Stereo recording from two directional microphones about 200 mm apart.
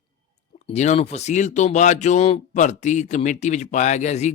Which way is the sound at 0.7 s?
35° left (ahead or behind).